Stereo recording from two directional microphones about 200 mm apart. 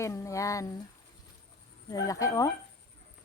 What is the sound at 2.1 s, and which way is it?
Speech, 15° left (ahead or behind).